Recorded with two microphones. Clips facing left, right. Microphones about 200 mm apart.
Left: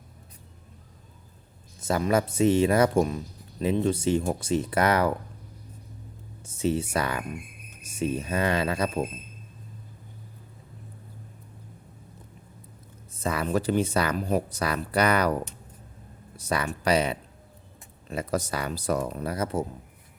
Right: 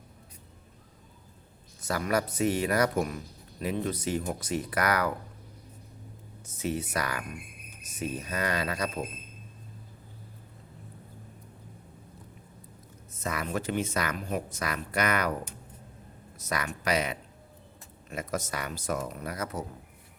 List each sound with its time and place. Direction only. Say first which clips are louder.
1.8 s speech: left 5 dB; 25° left (ahead or behind)
6.4 s speech: left 6 dB; 30° left (ahead or behind)
13.1 s speech: left 6 dB; 30° left (ahead or behind)
16.4 s speech: left 5 dB; 30° left (ahead or behind)